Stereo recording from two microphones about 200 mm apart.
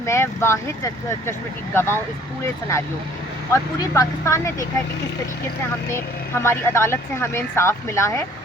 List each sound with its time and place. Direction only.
0.0 s speech: 15° left (ahead or behind)
6.4 s speech: 15° left (ahead or behind)